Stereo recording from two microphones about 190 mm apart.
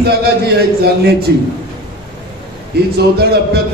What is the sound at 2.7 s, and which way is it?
Speech, 55° right (ahead or behind).